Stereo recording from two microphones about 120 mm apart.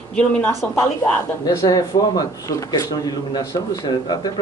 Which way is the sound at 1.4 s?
35° left (ahead or behind).